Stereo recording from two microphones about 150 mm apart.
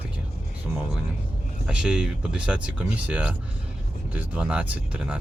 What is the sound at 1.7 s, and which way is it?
Speech, 5° right (ahead or behind).